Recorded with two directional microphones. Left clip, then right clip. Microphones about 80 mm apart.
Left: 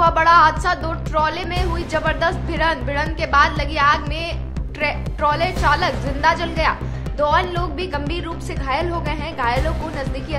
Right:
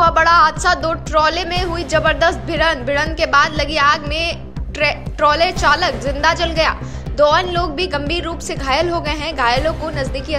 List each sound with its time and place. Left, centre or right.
0.0 s a woman's voice: right